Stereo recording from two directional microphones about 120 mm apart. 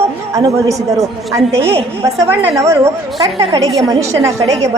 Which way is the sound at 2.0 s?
15° right (ahead or behind).